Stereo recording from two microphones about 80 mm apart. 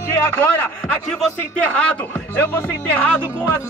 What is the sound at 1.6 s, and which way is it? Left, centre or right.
Speech, centre.